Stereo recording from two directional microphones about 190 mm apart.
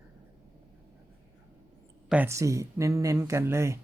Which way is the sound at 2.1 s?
10° right (ahead or behind).